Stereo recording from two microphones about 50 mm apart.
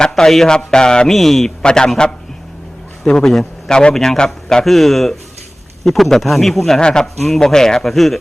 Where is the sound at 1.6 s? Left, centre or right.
Centre.